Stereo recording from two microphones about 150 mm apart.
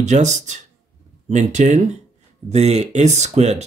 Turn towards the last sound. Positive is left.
turn(degrees=-45)  # may be behind; listen again after turning